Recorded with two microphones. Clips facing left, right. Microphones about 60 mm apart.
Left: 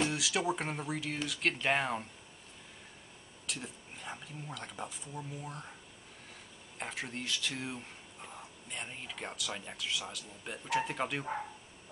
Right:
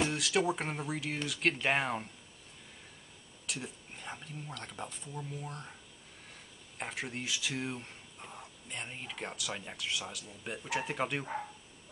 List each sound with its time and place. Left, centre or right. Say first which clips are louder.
0.0 s speech: right 2 dB; centre
3.4 s speech: right 1 dB; centre
6.8 s speech: right 1 dB; centre